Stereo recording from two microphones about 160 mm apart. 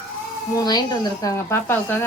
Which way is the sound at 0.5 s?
25° left (ahead or behind).